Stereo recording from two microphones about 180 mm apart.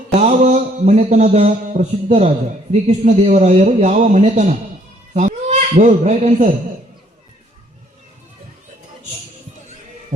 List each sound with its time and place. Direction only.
0.2 s mantra: 40° right (ahead or behind)
5.1 s speech: 40° right (ahead or behind)
10.1 s mantra: 40° right (ahead or behind)